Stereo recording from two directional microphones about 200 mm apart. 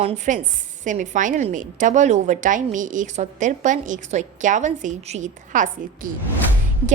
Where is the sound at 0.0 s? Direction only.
35° right (ahead or behind).